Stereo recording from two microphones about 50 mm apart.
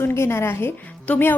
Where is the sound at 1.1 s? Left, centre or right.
Left.